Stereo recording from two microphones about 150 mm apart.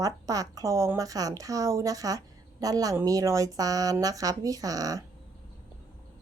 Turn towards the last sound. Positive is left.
turn(degrees=-25)  # may be behind; listen again after turning